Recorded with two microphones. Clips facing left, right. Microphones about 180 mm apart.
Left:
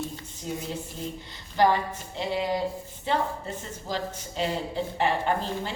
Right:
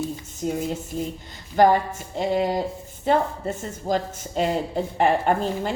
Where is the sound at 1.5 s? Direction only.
45° right (ahead or behind).